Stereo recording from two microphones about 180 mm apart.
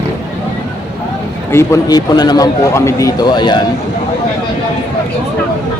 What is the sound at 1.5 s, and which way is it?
Speech, 20° left (ahead or behind).